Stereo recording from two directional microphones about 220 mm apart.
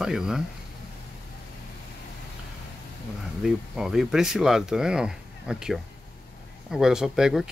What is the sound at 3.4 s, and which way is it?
Speech, centre (ahead or behind).